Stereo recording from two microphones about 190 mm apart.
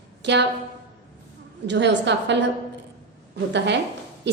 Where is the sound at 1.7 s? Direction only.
65° right (ahead or behind).